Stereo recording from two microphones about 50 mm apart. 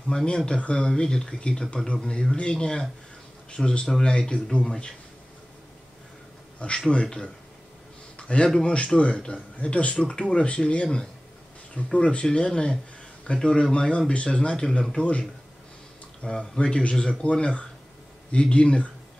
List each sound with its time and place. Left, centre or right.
0.1 s speech: centre
6.9 s speech: centre
8.2 s a sound: left
8.6 s speech: left